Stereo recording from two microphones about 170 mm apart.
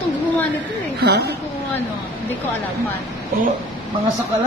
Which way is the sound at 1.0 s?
70° right (ahead or behind).